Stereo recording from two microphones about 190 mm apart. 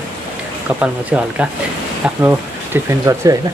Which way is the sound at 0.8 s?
5° right (ahead or behind).